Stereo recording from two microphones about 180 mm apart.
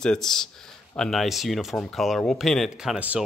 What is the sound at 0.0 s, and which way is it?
Speech, 5° left (ahead or behind).